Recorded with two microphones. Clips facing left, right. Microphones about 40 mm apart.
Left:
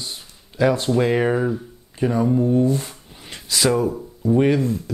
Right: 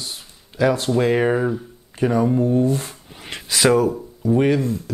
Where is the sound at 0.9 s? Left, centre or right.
Centre.